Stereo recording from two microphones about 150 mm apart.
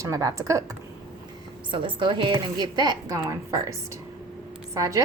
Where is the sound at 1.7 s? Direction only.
35° right (ahead or behind).